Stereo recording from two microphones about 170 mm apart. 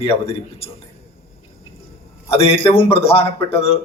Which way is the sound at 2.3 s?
35° left (ahead or behind).